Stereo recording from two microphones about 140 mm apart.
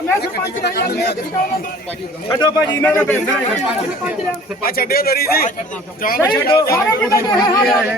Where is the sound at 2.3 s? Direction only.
30° left (ahead or behind).